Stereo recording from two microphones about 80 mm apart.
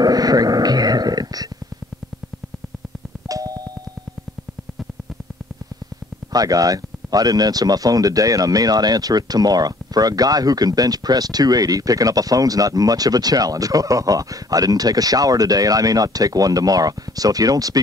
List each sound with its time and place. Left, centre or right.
0.0 s dog: right
3.3 s music: right
6.3 s speech: right